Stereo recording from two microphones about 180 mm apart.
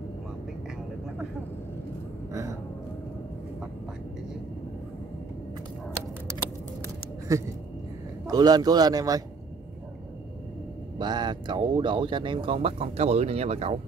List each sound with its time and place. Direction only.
7.3 s a man's voice: 20° right (ahead or behind)
11.0 s speech: 25° right (ahead or behind)